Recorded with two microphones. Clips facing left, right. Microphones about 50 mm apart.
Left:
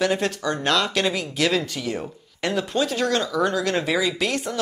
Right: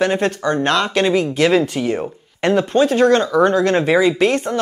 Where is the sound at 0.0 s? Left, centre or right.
Right.